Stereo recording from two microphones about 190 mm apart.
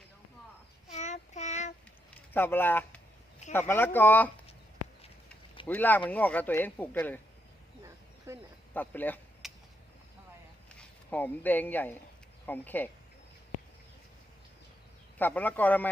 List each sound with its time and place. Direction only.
0.9 s child singing: 35° left (ahead or behind)
2.3 s speech: 10° left (ahead or behind)
5.6 s speech: 10° left (ahead or behind)
8.3 s speech: 15° right (ahead or behind)
8.7 s speech: 10° left (ahead or behind)
9.4 s a sound: centre (ahead or behind)
10.8 s speech: 10° left (ahead or behind)
15.2 s speech: 10° left (ahead or behind)